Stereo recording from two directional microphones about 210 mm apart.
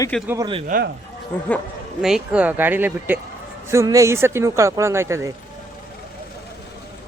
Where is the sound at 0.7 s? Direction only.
45° right (ahead or behind).